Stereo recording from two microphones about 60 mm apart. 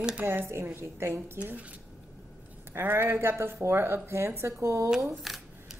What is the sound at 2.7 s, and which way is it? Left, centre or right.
Speech, right.